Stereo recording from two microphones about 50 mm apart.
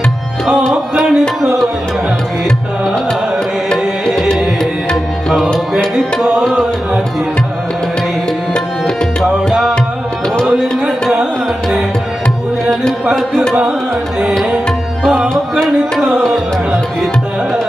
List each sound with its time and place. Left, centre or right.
0.7 s music: centre
3.7 s music: centre
9.2 s music: centre
10.5 s tabla: centre
15.1 s music: centre